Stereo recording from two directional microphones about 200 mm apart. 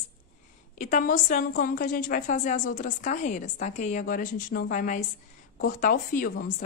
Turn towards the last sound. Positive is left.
turn(degrees=45)  # may be behind; listen again after turning